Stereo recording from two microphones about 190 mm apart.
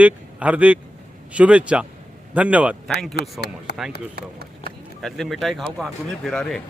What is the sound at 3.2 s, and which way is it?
Speech, 60° left (ahead or behind).